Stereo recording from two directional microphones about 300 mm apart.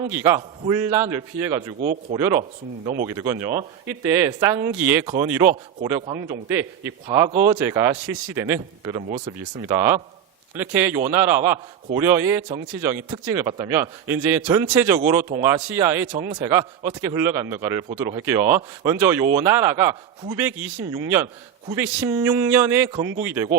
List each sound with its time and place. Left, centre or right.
0.0 s a man's voice: centre
7.3 s speech: right
7.7 s a man's voice: centre